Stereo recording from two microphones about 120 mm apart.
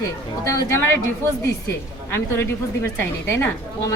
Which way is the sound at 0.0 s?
25° left (ahead or behind).